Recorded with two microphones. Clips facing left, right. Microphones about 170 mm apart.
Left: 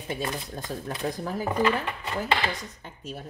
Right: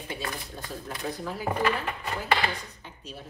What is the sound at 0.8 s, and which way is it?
Speech, 45° left (ahead or behind).